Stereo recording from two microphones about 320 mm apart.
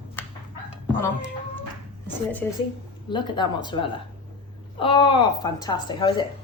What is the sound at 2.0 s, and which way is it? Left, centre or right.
A woman's voice, centre.